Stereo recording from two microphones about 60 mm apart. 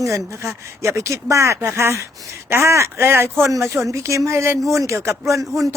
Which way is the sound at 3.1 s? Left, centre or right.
Right.